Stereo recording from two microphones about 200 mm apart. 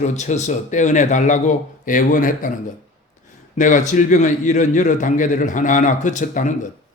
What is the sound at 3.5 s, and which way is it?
Speech, 40° left (ahead or behind).